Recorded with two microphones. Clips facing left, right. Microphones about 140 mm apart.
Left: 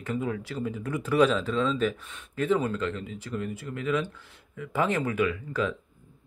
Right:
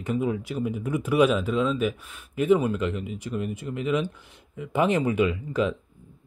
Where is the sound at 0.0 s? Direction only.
15° right (ahead or behind).